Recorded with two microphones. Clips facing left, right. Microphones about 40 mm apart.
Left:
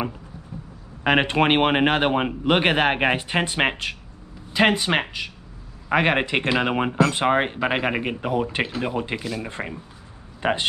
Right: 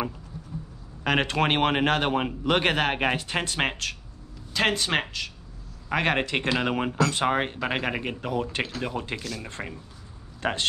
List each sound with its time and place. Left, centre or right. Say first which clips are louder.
1.0 s speech: left 5 dB; left